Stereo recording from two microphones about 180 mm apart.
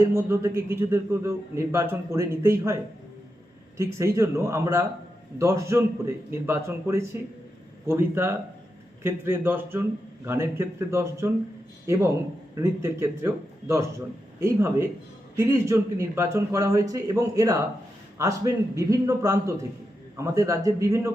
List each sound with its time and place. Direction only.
0.0 s a man's voice: 15° right (ahead or behind)
3.8 s a man's voice: 15° right (ahead or behind)